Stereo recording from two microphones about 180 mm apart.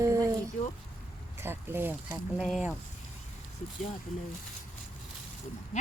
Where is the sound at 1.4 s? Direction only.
10° right (ahead or behind).